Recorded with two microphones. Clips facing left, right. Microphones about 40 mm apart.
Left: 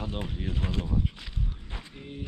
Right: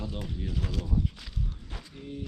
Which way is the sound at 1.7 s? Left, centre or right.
Left.